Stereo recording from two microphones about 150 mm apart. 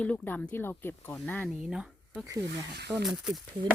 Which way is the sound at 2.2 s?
20° right (ahead or behind).